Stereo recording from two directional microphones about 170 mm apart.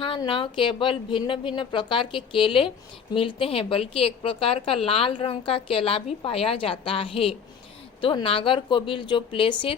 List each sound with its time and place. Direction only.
0.0 s a woman's voice: 30° left (ahead or behind)